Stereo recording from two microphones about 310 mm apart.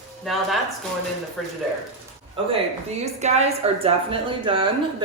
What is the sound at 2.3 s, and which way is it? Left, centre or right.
A woman's voice, centre.